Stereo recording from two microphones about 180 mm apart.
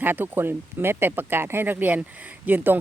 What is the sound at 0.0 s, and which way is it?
Speech, 10° right (ahead or behind).